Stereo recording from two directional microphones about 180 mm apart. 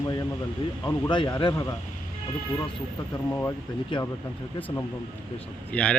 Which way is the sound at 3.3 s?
10° left (ahead or behind).